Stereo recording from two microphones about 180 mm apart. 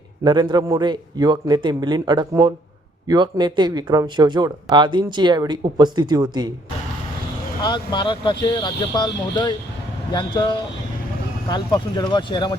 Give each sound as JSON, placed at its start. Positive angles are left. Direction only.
{"t": 0.3, "sound": "speech", "side_deg": -25}
{"t": 7.6, "sound": "speech", "side_deg": 25}